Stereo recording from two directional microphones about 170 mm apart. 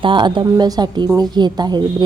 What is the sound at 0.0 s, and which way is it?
A woman's voice, 30° right (ahead or behind).